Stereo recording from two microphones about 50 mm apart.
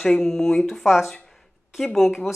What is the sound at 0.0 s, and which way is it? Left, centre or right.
Speech, centre.